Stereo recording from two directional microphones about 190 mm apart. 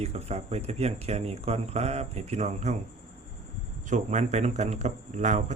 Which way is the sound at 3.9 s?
40° right (ahead or behind).